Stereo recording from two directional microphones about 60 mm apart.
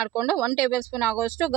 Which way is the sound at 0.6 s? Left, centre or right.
Right.